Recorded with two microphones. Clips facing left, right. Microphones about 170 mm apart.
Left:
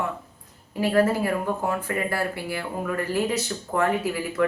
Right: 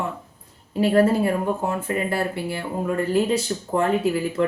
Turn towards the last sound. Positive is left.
turn(degrees=-25)  # may be behind; listen again after turning